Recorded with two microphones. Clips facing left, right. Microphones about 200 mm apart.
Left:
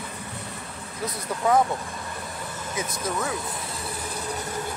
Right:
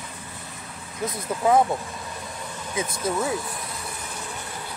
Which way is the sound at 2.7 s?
30° right (ahead or behind).